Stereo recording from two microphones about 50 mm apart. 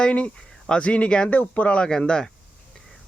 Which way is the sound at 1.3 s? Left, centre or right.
Left.